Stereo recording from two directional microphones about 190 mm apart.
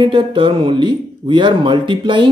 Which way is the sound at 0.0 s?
25° right (ahead or behind).